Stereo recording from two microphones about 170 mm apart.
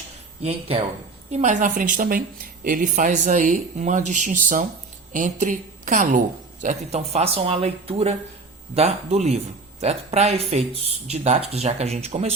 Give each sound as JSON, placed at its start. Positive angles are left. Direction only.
{"t": 1.3, "sound": "a woman's voice", "side_deg": -45}